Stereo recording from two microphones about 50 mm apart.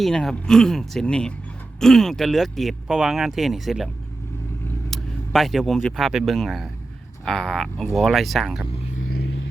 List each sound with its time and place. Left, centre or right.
0.1 s speech: centre
1.8 s speech: centre
2.8 s speech: centre
4.9 s speech: centre